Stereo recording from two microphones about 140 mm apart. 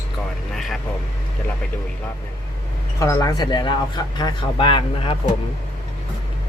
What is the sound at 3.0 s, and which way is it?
Speech, 20° left (ahead or behind).